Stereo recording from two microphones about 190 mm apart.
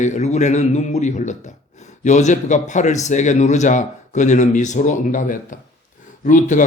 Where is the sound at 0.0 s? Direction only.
40° left (ahead or behind).